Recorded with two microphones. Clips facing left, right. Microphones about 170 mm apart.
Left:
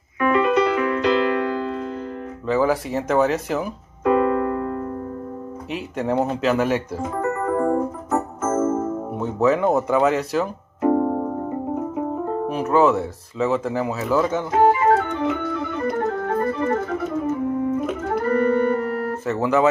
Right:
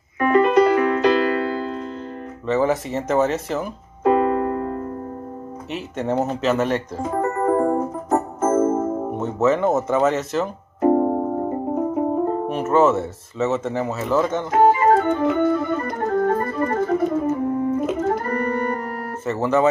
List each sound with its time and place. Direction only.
0.2 s music: 40° right (ahead or behind)
2.4 s speech: centre (ahead or behind)
4.0 s keyboard: 35° right (ahead or behind)
5.7 s speech: centre (ahead or behind)
7.2 s keyboard: 35° right (ahead or behind)
9.2 s speech: centre (ahead or behind)
10.8 s keyboard: 35° right (ahead or behind)
12.5 s speech: centre (ahead or behind)
14.9 s organ: 40° right (ahead or behind)
19.2 s speech: centre (ahead or behind)